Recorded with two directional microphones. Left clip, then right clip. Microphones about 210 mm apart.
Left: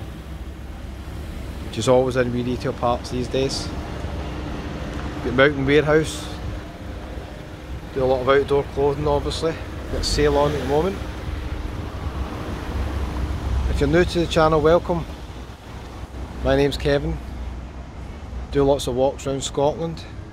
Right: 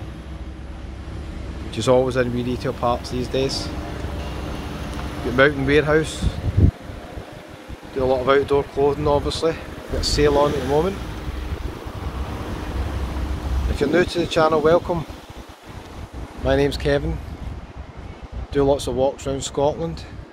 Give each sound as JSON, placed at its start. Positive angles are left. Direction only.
{"t": 1.7, "sound": "speech", "side_deg": 0}
{"t": 5.3, "sound": "speech", "side_deg": 5}
{"t": 8.0, "sound": "speech", "side_deg": -10}
{"t": 10.5, "sound": "speech", "side_deg": -45}
{"t": 13.7, "sound": "speech", "side_deg": 0}
{"t": 16.4, "sound": "speech", "side_deg": 5}
{"t": 18.5, "sound": "speech", "side_deg": 0}